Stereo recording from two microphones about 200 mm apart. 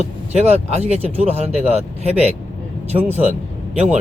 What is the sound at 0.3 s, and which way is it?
Speech, 30° right (ahead or behind).